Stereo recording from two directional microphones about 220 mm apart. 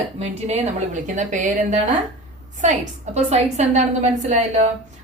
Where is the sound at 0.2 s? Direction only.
30° right (ahead or behind).